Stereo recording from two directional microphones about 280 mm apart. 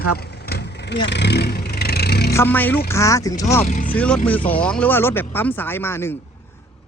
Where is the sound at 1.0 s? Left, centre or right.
Left.